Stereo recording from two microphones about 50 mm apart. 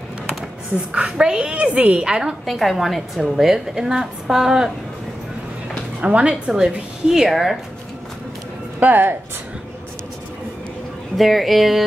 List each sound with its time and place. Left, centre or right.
1.1 s a woman's voice: centre
2.4 s a woman's voice: centre
6.0 s a woman's voice: right
6.6 s a woman's voice: centre
8.7 s speech: right
11.1 s a woman's voice: centre